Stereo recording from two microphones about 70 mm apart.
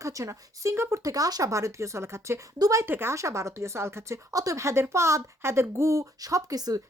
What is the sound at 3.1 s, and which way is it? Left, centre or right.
Speech, right.